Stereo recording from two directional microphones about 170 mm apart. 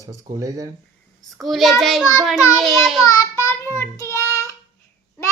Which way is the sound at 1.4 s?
Centre (ahead or behind).